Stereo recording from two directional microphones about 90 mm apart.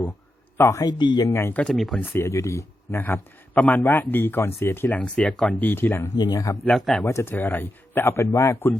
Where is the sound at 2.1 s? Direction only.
30° left (ahead or behind).